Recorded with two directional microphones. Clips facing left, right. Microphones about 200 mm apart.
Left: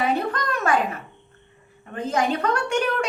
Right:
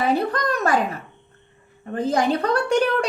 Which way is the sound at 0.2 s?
35° right (ahead or behind).